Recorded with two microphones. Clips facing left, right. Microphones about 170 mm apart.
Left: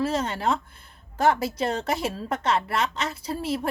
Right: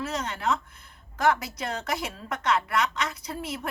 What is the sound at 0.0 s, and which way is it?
Speech, 30° left (ahead or behind).